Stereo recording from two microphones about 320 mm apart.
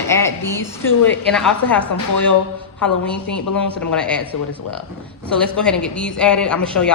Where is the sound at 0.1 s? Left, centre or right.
Centre.